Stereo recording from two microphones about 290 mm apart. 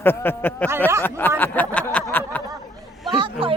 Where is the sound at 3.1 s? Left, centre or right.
Centre.